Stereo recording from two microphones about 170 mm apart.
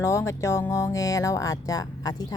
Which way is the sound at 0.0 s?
15° left (ahead or behind).